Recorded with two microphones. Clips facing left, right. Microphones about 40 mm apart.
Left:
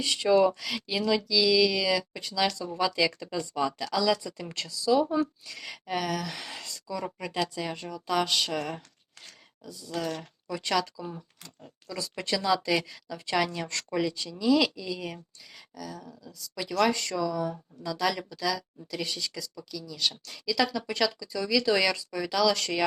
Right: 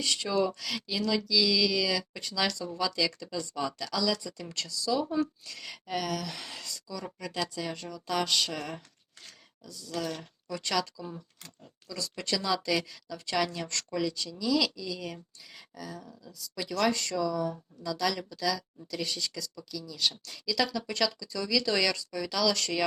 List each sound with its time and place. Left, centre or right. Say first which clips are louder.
0.0 s speech: left 6 dB; centre
6.6 s speech: left 4 dB; left
7.0 s speech: left 3 dB; centre
14.8 s speech: left 2 dB; centre
15.5 s a sound: left 2 dB; centre
16.0 s speech: left 2 dB; centre